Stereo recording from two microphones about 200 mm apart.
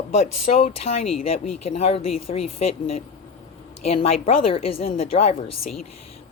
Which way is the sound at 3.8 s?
30° left (ahead or behind).